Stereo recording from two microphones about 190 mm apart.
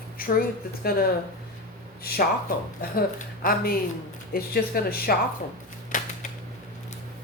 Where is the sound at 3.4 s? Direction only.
50° left (ahead or behind).